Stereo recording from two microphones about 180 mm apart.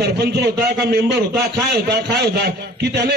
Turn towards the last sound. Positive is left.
turn(degrees=-65)  # may be behind; listen again after turning